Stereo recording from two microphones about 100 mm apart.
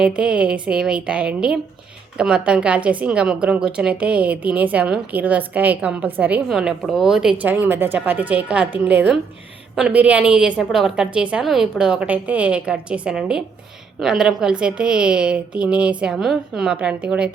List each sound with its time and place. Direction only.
0.0 s a woman's voice: 10° right (ahead or behind)
6.5 s speech: 5° right (ahead or behind)
7.4 s a woman's voice: 20° right (ahead or behind)
16.1 s a woman's voice: centre (ahead or behind)